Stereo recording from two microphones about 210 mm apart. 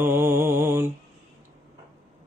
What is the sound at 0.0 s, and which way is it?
Mantra, 10° right (ahead or behind).